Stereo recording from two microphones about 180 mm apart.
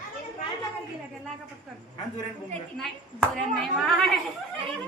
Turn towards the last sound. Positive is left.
turn(degrees=5)  # may be behind; listen again after turning